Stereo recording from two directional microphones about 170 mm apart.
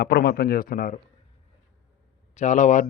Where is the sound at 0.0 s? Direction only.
70° left (ahead or behind).